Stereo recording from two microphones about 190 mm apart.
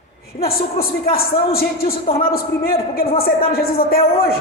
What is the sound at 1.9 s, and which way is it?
Speech, 30° left (ahead or behind).